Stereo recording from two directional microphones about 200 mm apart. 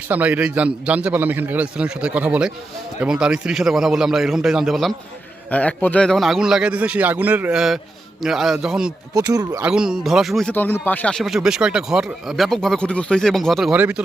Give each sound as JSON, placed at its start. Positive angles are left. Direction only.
{"t": 0.1, "sound": "a man's voice", "side_deg": -5}
{"t": 9.1, "sound": "speech", "side_deg": -20}
{"t": 9.6, "sound": "speech", "side_deg": -5}